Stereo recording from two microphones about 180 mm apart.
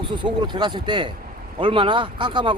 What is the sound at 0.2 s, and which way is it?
A man's voice, 25° right (ahead or behind).